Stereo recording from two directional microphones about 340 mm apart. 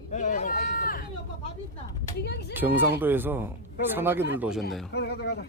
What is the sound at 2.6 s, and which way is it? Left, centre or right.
Speech, centre.